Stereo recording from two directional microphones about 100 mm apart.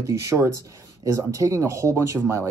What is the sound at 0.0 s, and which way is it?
Speech, 30° right (ahead or behind).